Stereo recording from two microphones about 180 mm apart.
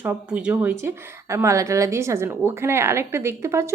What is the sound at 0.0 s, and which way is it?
A woman's voice, 10° right (ahead or behind).